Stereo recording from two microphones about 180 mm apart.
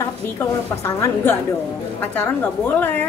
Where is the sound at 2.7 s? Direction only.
10° left (ahead or behind).